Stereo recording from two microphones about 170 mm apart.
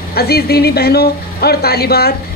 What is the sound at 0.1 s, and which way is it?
Speech, 70° left (ahead or behind).